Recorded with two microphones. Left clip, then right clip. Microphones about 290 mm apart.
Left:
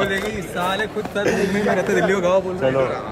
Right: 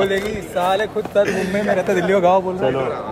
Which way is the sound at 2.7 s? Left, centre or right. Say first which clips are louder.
Left 2 dB; centre.